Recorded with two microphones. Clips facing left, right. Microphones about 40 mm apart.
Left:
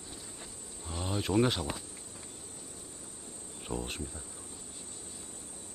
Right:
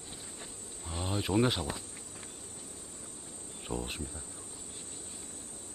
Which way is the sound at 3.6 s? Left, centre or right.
Centre.